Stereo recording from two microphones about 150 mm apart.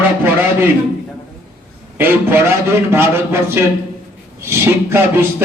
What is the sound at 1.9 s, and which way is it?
A man's voice, 15° right (ahead or behind).